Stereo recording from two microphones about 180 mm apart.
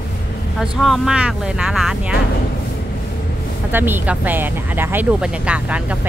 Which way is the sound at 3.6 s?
10° right (ahead or behind).